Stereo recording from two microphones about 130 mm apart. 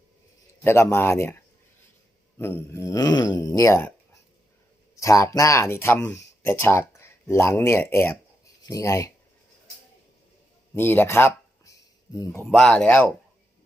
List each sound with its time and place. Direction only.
0.6 s speech: 20° left (ahead or behind)
2.4 s speech: 20° left (ahead or behind)
10.8 s a sound: 15° left (ahead or behind)
12.5 s speech: 5° left (ahead or behind)